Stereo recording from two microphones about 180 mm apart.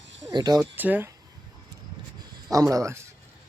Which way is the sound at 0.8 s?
10° right (ahead or behind).